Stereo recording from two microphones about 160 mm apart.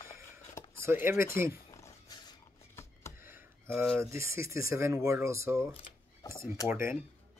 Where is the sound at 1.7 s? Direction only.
20° left (ahead or behind).